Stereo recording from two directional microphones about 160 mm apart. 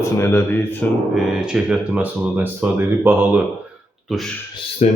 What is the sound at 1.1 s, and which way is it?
Speech, 5° right (ahead or behind).